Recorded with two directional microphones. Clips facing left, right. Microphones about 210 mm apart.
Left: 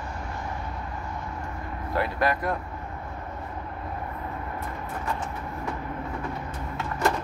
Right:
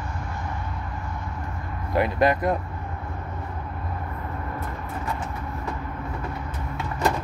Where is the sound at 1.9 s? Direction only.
20° right (ahead or behind).